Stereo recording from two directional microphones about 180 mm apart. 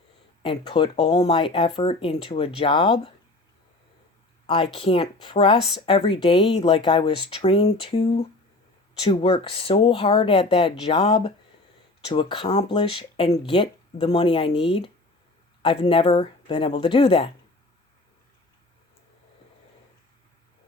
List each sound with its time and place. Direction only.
0.4 s speech: 30° left (ahead or behind)
4.4 s speech: 30° left (ahead or behind)